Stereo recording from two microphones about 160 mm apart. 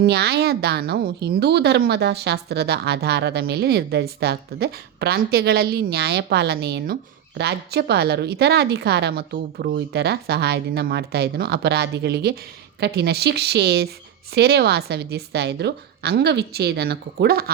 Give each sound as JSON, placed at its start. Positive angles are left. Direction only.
{"t": 0.0, "sound": "a woman's voice", "side_deg": -85}
{"t": 12.8, "sound": "a woman's voice", "side_deg": -90}